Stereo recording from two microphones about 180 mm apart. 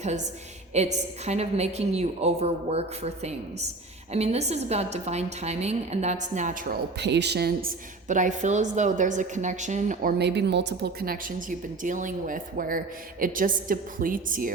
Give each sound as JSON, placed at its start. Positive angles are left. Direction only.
{"t": 0.7, "sound": "a woman's voice", "side_deg": -40}
{"t": 7.0, "sound": "speech", "side_deg": -70}
{"t": 8.0, "sound": "a woman's voice", "side_deg": -45}